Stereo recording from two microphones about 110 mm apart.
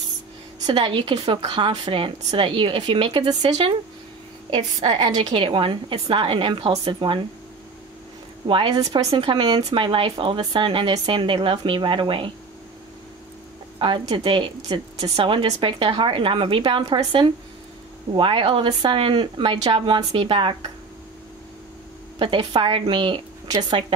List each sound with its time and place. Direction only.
0.7 s speech: 50° right (ahead or behind)
4.5 s speech: 45° right (ahead or behind)
8.5 s speech: 45° right (ahead or behind)
13.7 s speech: 45° right (ahead or behind)
22.2 s speech: 50° right (ahead or behind)